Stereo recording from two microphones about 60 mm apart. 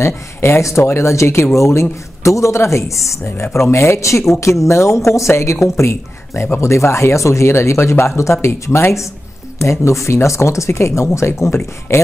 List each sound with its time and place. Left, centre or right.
0.0 s speech: left